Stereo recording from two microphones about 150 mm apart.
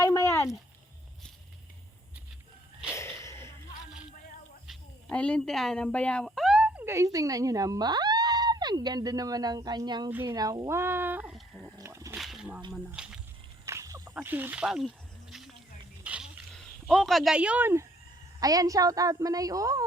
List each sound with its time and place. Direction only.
0.0 s a sound: 20° left (ahead or behind)
2.9 s whip: 20° left (ahead or behind)
4.6 s a sound: centre (ahead or behind)
5.1 s speech: 5° left (ahead or behind); by 10.1 s 30° right (ahead or behind)
10.1 s speech: 15° right (ahead or behind)
10.3 s speech: 25° right (ahead or behind)
11.3 s dog: centre (ahead or behind)
11.8 s wild animals: 20° right (ahead or behind)
12.1 s whip: 5° right (ahead or behind)
12.7 s speech: 5° right (ahead or behind)
13.7 s snake: 20° right (ahead or behind); by 15.5 s centre (ahead or behind)
16.0 s a sound: 5° right (ahead or behind)
16.5 s a woman's voice: 5° left (ahead or behind); by 19.8 s 25° right (ahead or behind)